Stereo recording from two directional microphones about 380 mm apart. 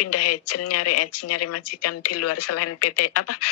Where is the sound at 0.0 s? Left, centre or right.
Left.